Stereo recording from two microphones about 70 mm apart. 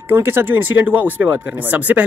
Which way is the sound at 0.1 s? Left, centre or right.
Right.